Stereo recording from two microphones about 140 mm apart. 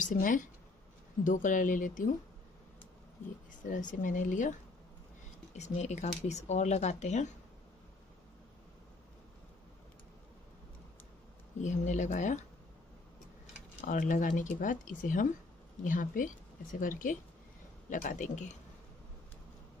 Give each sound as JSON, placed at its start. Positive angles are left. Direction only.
{"t": 0.0, "sound": "speech", "side_deg": 70}
{"t": 3.6, "sound": "speech", "side_deg": 70}
{"t": 11.6, "sound": "speech", "side_deg": 60}
{"t": 13.7, "sound": "speech", "side_deg": 70}